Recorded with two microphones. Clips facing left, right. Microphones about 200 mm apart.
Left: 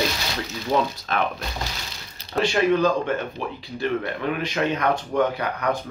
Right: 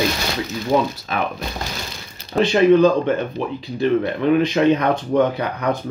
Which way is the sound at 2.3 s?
20° right (ahead or behind).